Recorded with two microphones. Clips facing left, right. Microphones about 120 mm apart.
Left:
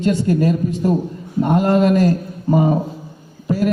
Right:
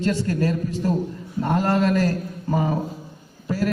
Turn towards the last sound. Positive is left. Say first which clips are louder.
# left 5 dB
turn(degrees=15)  # may be behind; listen again after turning